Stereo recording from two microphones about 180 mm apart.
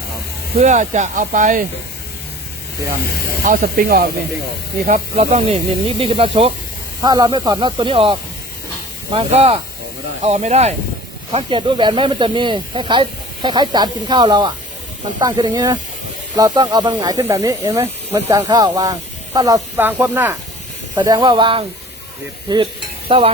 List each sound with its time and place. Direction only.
0.6 s speech: 40° right (ahead or behind)
3.4 s speech: 50° right (ahead or behind)
4.9 s speech: 35° right (ahead or behind)
9.1 s speech: 30° right (ahead or behind); by 20.3 s 10° right (ahead or behind)
20.9 s speech: 20° right (ahead or behind)
22.4 s stir: 25° right (ahead or behind)